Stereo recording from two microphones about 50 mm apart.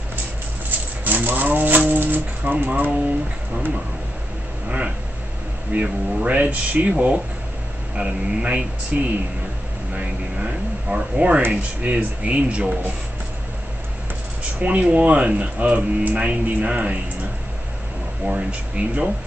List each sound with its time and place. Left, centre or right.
0.7 s a sound: right
4.6 s speech: right
14.6 s speech: right
18.2 s speech: right